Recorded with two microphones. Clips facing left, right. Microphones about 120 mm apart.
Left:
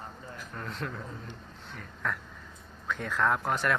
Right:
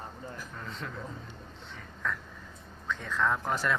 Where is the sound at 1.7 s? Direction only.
5° left (ahead or behind).